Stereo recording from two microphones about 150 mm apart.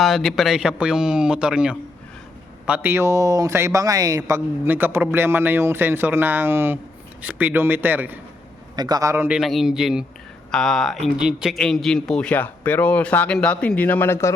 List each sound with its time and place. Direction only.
0.0 s a man's voice: centre (ahead or behind)
8.7 s speech: 25° right (ahead or behind)
9.3 s a man's voice: centre (ahead or behind); by 14.3 s 15° left (ahead or behind)